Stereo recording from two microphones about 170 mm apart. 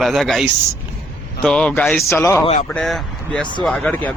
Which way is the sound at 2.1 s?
15° left (ahead or behind).